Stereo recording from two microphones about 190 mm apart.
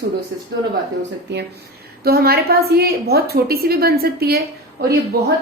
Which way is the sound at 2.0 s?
55° right (ahead or behind).